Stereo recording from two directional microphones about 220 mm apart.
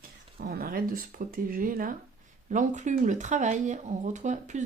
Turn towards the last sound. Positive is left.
turn(degrees=-35)  # may be behind; listen again after turning